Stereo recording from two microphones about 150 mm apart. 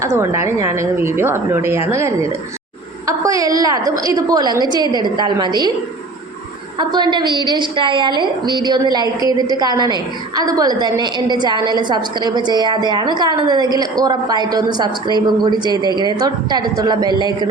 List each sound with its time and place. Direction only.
0.0 s a woman's voice: 20° right (ahead or behind)
6.7 s a woman's voice: 30° right (ahead or behind)